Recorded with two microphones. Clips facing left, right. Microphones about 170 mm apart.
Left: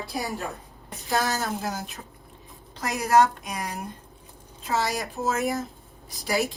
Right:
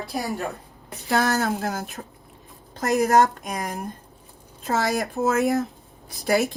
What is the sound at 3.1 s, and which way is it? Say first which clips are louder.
Speech: right 1 dB; 40° right (ahead or behind).